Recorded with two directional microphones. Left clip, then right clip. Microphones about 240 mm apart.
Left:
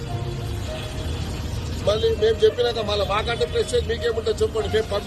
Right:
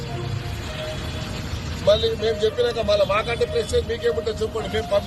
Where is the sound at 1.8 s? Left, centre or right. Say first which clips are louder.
Right 1 dB; centre.